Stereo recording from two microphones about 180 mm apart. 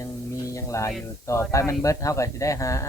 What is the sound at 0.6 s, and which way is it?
Speech, 15° left (ahead or behind).